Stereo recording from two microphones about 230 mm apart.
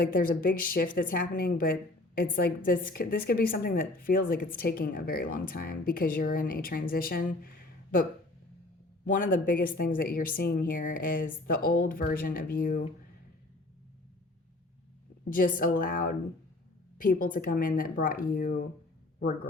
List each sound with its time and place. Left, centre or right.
0.0 s a woman's voice: left
9.0 s a woman's voice: left
15.3 s a woman's voice: left